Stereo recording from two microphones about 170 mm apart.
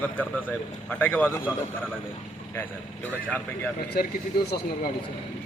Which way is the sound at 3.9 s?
65° left (ahead or behind).